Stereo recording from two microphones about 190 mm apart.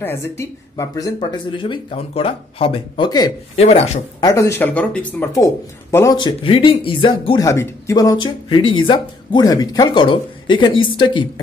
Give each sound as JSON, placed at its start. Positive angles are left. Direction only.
{"t": 0.0, "sound": "speech", "side_deg": 10}
{"t": 3.5, "sound": "speech", "side_deg": 35}
{"t": 4.2, "sound": "speech", "side_deg": 20}
{"t": 7.4, "sound": "speech", "side_deg": 15}